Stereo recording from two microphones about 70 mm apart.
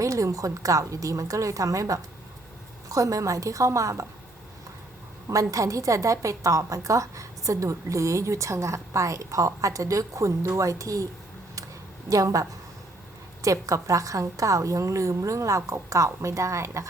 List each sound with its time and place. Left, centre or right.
0.0 s a woman's voice: right
5.3 s a woman's voice: right